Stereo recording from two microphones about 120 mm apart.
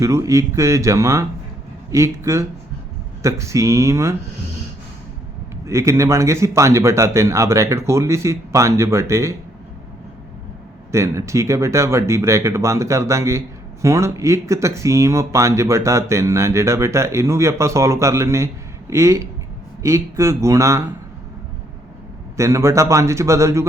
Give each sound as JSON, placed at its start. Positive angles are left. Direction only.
{"t": 0.0, "sound": "speech", "side_deg": -25}
{"t": 5.6, "sound": "speech", "side_deg": -25}
{"t": 10.9, "sound": "speech", "side_deg": -25}
{"t": 22.4, "sound": "speech", "side_deg": -25}